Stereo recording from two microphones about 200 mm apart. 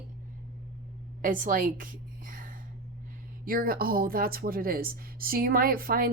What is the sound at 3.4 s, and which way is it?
Speech, 45° right (ahead or behind).